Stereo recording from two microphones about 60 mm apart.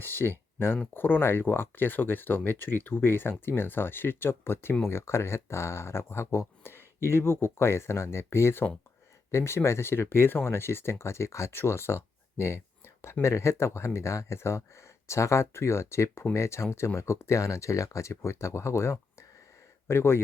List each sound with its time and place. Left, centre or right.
0.0 s speech: left